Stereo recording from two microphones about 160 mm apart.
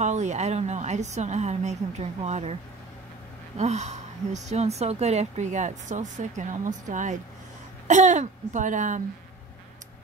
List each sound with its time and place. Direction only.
0.0 s speech: 45° right (ahead or behind)
3.5 s speech: 45° right (ahead or behind)